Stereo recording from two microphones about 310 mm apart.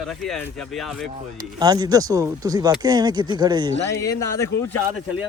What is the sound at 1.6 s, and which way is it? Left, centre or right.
Speech, centre.